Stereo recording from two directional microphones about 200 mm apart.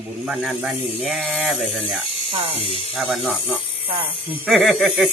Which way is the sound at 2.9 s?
Centre (ahead or behind).